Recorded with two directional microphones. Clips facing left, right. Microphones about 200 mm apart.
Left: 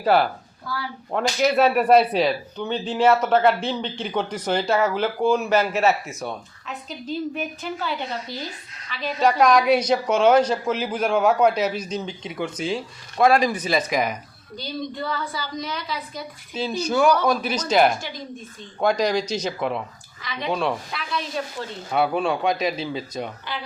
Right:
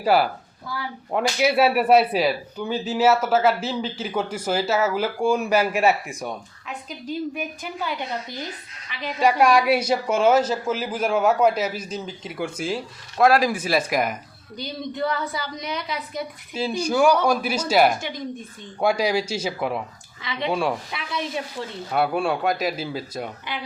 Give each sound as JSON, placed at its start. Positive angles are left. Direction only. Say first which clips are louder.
{"t": 0.0, "sound": "a woman's voice", "louder": "even", "side_deg": -10}
{"t": 14.5, "sound": "a woman's voice", "louder": "left 1 dB", "side_deg": -20}
{"t": 20.9, "sound": "a woman's voice", "louder": "even", "side_deg": -20}
{"t": 21.9, "sound": "a woman's voice", "louder": "left 1 dB", "side_deg": -5}